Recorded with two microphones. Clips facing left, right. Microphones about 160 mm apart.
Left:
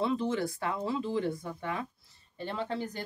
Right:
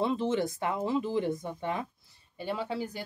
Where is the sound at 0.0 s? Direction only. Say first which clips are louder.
Right 2 dB; 20° right (ahead or behind).